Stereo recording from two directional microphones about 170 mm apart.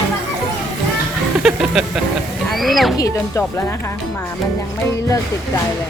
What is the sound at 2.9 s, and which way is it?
Speech, 20° left (ahead or behind).